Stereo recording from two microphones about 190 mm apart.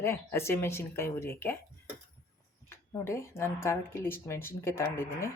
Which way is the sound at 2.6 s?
15° left (ahead or behind).